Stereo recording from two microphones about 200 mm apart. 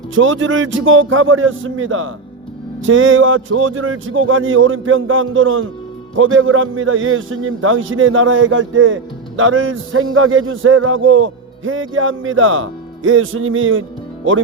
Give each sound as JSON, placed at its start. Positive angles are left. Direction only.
{"t": 0.1, "sound": "a man's voice", "side_deg": -75}